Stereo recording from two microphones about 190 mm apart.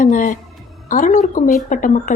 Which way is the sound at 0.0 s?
40° left (ahead or behind).